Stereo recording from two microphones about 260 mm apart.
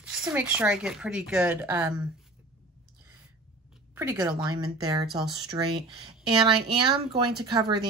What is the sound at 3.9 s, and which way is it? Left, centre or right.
Speech, centre.